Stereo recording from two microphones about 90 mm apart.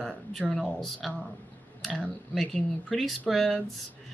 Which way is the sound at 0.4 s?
10° left (ahead or behind).